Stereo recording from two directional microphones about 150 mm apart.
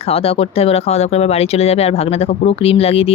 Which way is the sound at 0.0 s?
40° left (ahead or behind).